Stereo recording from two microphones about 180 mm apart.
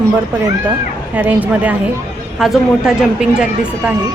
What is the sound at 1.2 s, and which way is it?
A woman's voice, 10° right (ahead or behind).